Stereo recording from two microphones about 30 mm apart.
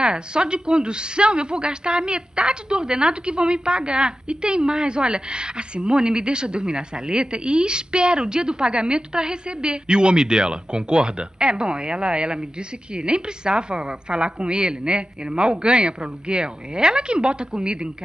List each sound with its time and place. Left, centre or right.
0.0 s a woman's voice: right